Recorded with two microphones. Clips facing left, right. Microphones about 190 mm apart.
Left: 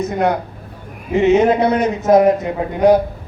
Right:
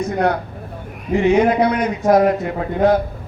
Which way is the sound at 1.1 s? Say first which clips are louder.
Left 2 dB; 25° left (ahead or behind).